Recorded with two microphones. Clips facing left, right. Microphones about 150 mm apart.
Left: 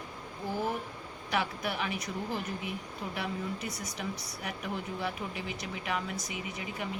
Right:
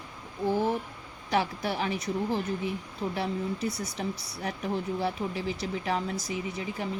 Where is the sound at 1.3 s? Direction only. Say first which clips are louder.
Right 4 dB; 30° right (ahead or behind).